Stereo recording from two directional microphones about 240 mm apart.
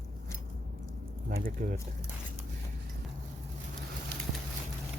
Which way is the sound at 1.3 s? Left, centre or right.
Right.